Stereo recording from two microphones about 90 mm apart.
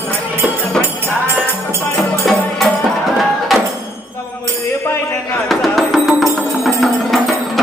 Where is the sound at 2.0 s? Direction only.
Centre (ahead or behind).